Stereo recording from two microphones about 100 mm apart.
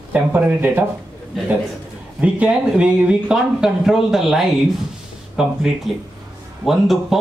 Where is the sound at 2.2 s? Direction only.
10° right (ahead or behind).